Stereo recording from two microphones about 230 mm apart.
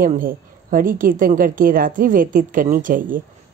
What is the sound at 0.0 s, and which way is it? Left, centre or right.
A woman's voice, right.